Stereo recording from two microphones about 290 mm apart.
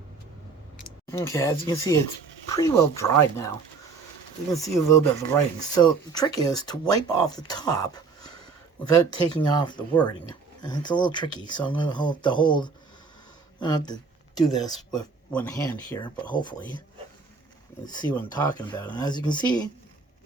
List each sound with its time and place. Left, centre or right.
1.1 s speech: centre
9.3 s speech: centre
17.8 s speech: centre